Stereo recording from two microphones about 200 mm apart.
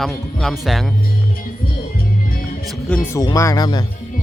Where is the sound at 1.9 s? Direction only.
50° left (ahead or behind).